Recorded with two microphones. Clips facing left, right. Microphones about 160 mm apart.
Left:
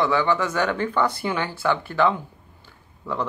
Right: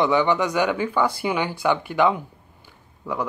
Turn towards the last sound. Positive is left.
turn(degrees=-10)  # may be behind; listen again after turning